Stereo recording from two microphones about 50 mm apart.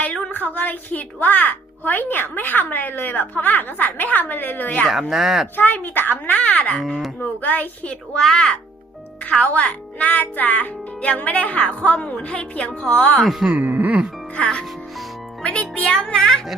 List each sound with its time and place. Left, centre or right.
0.3 s a child's voice: left
4.9 s speech: centre
5.5 s a child's voice: left
6.8 s speech: centre
7.2 s a child's voice: left
8.1 s speech: centre
9.4 s a child's voice: left
13.6 s speech: right
14.3 s speech: left